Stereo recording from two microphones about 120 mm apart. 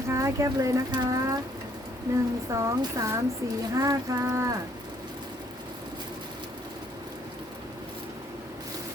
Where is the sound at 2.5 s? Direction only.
25° right (ahead or behind).